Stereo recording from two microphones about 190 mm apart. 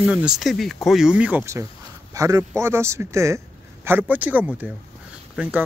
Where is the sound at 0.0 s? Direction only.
5° right (ahead or behind).